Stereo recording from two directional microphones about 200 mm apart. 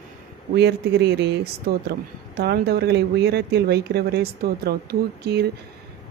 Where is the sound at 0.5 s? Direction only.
55° right (ahead or behind).